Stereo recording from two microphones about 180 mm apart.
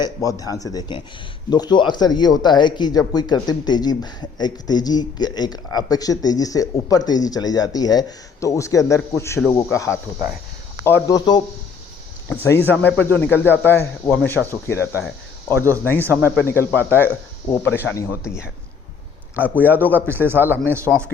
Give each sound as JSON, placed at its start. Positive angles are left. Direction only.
{"t": 0.0, "sound": "speech", "side_deg": 20}
{"t": 19.9, "sound": "speech", "side_deg": -10}